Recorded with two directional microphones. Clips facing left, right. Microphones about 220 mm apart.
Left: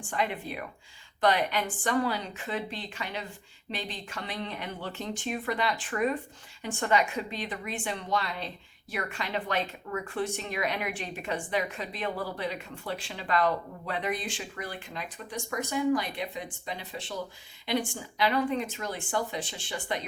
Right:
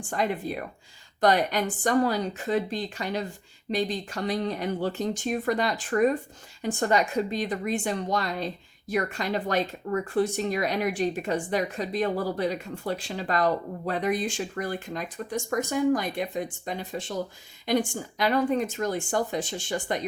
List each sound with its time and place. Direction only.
0.1 s a woman's voice: 40° right (ahead or behind)